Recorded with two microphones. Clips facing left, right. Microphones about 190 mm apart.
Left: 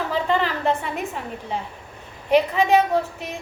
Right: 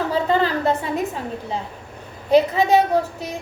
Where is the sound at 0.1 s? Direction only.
40° right (ahead or behind).